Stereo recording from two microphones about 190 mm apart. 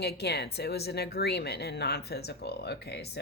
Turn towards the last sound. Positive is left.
turn(degrees=60)  # may be behind; listen again after turning